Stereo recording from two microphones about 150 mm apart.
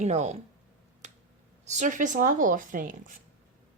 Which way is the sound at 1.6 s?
50° right (ahead or behind).